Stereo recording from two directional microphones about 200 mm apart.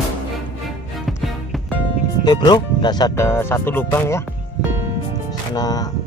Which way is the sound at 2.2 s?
20° left (ahead or behind).